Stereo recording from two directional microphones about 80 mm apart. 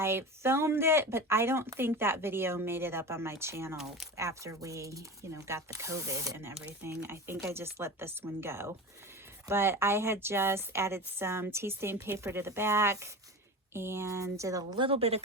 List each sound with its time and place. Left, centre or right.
0.0 s speech: right